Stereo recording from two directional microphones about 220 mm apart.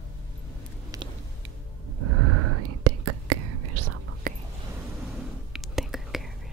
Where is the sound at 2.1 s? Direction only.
90° right.